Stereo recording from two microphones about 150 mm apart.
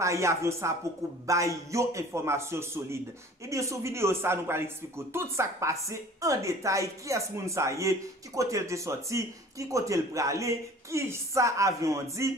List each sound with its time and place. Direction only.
0.0 s a man's voice: 20° right (ahead or behind)